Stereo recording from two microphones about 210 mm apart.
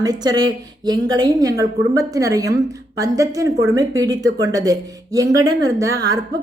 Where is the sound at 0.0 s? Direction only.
20° right (ahead or behind).